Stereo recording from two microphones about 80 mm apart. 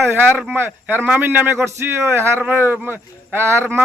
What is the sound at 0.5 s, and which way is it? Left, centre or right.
Speech, right.